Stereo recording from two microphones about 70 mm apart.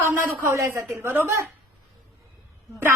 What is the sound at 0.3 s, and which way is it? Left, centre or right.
Speech, right.